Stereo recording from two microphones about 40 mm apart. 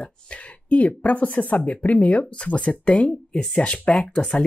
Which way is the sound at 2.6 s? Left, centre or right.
Left.